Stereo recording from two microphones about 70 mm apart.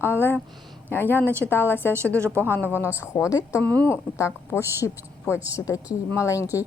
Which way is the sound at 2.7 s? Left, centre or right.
Left.